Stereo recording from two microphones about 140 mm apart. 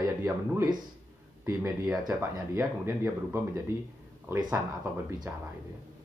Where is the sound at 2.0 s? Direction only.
20° right (ahead or behind).